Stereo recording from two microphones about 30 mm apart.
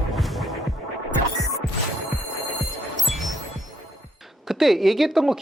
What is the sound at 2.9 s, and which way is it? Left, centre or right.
Music, centre.